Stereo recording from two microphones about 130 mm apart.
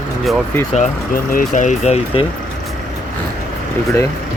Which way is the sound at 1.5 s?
70° left (ahead or behind).